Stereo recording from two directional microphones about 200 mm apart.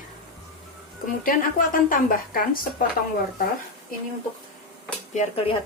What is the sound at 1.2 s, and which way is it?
A woman's voice, 45° left (ahead or behind).